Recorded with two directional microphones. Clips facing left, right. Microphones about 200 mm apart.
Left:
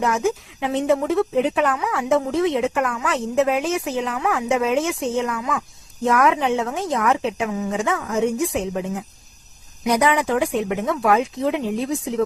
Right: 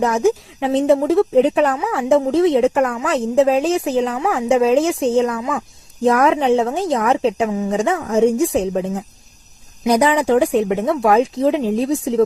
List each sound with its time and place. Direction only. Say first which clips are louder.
0.0 s speech: right 5 dB; 35° right (ahead or behind)